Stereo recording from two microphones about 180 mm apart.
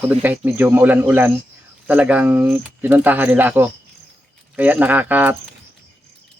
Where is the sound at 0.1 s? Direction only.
10° right (ahead or behind).